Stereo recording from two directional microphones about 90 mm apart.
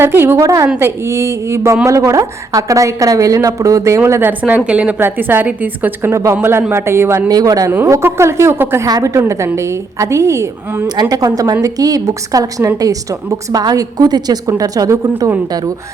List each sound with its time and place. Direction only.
0.0 s a woman's voice: 25° right (ahead or behind)
7.3 s a woman's voice: 45° right (ahead or behind)
7.7 s a woman's voice: 25° right (ahead or behind)
8.9 s a woman's voice: 40° right (ahead or behind)
11.1 s a woman's voice: 45° right (ahead or behind)